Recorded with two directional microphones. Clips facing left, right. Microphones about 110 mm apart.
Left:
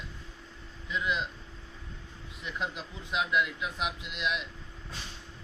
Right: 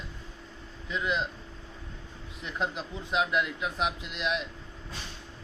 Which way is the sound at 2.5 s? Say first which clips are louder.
Right 4 dB; 35° right (ahead or behind).